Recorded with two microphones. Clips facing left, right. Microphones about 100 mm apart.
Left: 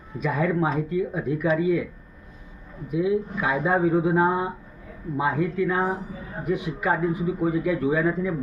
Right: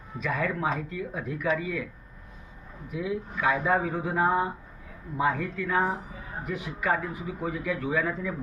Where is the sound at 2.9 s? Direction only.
20° left (ahead or behind).